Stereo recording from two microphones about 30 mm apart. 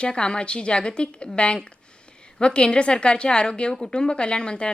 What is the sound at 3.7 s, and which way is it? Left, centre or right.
Speech, centre.